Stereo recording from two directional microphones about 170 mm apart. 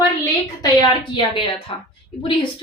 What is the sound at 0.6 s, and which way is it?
A woman's voice, 25° left (ahead or behind).